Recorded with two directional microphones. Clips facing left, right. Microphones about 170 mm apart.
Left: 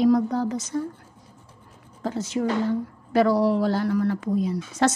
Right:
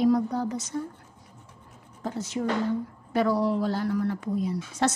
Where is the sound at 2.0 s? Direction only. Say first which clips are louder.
Left 3 dB; 90° left.